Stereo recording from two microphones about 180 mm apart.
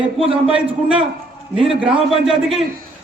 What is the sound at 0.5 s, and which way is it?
A man's voice, 5° right (ahead or behind).